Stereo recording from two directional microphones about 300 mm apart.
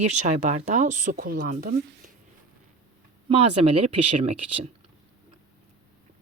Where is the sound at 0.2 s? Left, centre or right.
Right.